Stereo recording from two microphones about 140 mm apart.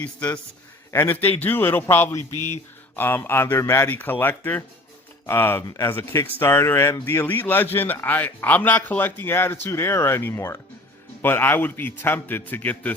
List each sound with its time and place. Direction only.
0.0 s speech: 10° left (ahead or behind)